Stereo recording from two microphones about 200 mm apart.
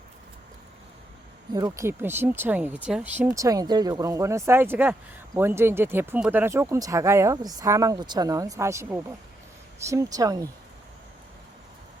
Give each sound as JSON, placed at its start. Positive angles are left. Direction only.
{"t": 1.5, "sound": "speech", "side_deg": -15}